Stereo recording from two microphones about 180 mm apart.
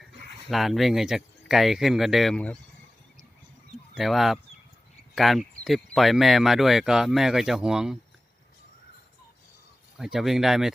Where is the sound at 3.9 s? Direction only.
Centre (ahead or behind).